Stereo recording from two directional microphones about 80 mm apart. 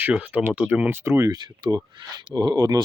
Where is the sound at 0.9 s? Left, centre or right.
Right.